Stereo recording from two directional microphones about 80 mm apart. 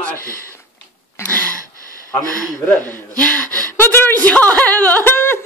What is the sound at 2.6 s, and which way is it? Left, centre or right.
Gasp, centre.